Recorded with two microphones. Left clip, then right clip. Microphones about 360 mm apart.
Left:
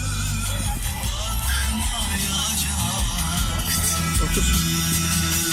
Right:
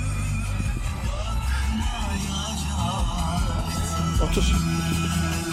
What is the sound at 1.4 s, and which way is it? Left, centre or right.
Music, centre.